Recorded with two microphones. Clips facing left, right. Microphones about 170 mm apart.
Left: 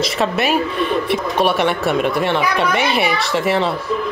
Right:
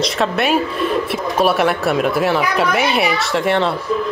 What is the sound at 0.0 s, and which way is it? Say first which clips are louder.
Speech: even; centre (ahead or behind).